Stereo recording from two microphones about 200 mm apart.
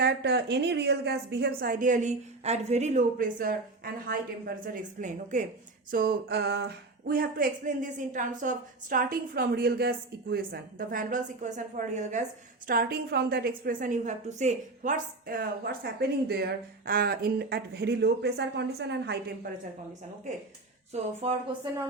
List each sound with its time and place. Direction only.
0.0 s a woman's voice: 55° right (ahead or behind); by 12.2 s 35° right (ahead or behind)
12.6 s a woman's voice: 45° right (ahead or behind)
20.9 s a woman's voice: 30° right (ahead or behind)